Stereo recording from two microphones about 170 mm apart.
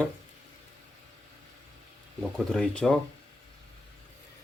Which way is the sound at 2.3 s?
5° left (ahead or behind).